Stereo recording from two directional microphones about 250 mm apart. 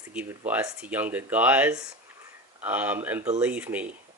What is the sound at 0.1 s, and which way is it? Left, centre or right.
Speech, centre.